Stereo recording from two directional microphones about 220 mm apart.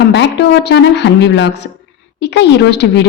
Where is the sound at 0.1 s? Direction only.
55° left (ahead or behind).